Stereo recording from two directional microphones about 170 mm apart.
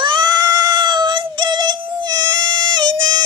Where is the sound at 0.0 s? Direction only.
25° right (ahead or behind).